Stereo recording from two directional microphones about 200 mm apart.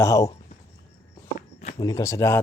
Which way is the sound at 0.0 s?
15° left (ahead or behind).